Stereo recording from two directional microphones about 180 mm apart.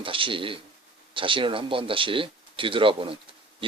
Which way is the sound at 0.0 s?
30° right (ahead or behind).